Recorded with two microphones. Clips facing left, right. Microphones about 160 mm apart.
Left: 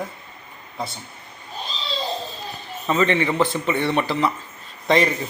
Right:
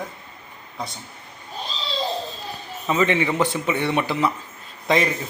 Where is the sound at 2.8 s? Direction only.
10° right (ahead or behind).